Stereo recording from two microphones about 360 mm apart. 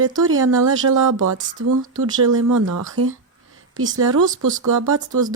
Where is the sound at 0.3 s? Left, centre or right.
Right.